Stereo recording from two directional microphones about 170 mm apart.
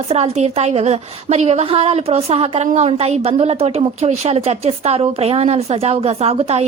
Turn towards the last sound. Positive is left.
turn(degrees=-35)  # may be behind; listen again after turning